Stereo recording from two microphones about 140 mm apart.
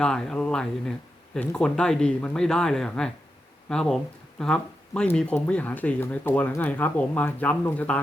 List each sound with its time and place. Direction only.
0.0 s speech: 5° left (ahead or behind)